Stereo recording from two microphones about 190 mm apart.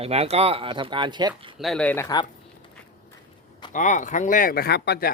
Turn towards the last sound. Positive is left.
turn(degrees=55)  # may be behind; listen again after turning